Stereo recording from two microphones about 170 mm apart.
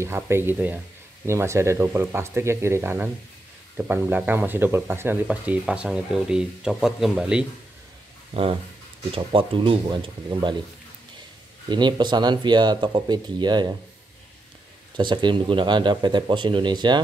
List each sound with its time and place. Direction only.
0.0 s speech: 15° right (ahead or behind)
8.3 s speech: 35° right (ahead or behind)
11.7 s speech: 25° right (ahead or behind)
15.0 s speech: 25° right (ahead or behind)